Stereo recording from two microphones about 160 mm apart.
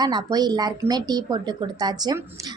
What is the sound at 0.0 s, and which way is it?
A woman's voice, 25° right (ahead or behind).